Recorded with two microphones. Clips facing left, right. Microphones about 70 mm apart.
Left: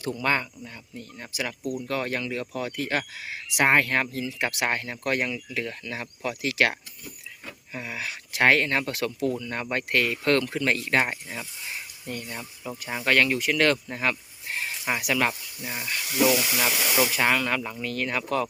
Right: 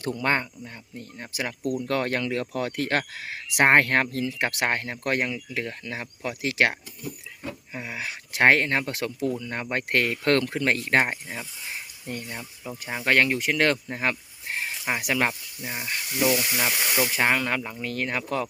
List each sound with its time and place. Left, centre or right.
0.2 s speech: right
1.9 s speech: right
7.7 s speech: right
9.9 s speech: right
12.4 s speech: centre
13.1 s speech: right
16.0 s speech: left
16.6 s speech: centre
17.2 s speech: right
17.8 s speech: right
18.2 s speech: centre